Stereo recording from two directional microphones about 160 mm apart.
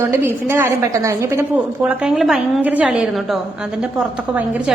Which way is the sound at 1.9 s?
5° right (ahead or behind).